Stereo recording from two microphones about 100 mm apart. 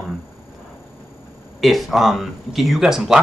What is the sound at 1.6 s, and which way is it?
Speech, centre (ahead or behind).